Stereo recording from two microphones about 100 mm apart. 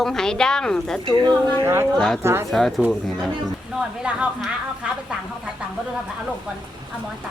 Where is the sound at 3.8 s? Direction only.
10° right (ahead or behind).